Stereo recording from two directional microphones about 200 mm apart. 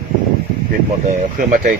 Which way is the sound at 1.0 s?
40° right (ahead or behind).